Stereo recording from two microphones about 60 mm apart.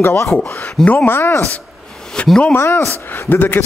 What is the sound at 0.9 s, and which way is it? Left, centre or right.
Speech, left.